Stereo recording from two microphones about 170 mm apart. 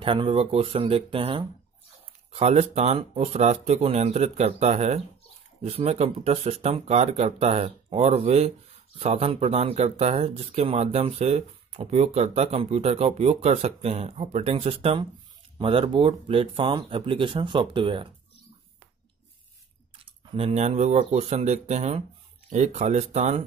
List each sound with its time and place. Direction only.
0.0 s speech: 30° right (ahead or behind)
20.3 s speech: 35° right (ahead or behind)